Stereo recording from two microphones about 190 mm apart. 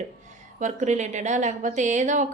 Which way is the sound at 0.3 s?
40° right (ahead or behind).